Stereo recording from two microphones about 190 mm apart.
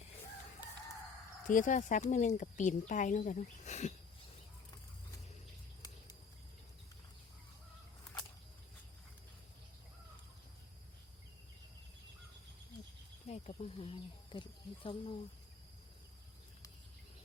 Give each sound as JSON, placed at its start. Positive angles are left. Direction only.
{"t": 1.5, "sound": "speech", "side_deg": 45}
{"t": 13.2, "sound": "speech", "side_deg": 35}